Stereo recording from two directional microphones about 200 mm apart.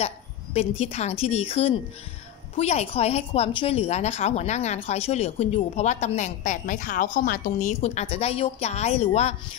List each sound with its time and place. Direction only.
0.0 s a woman's voice: 30° left (ahead or behind)